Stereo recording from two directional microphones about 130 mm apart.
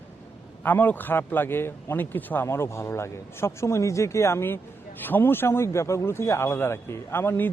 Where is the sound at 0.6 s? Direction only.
10° left (ahead or behind).